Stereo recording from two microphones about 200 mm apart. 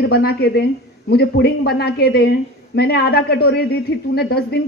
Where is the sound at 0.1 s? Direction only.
50° left (ahead or behind).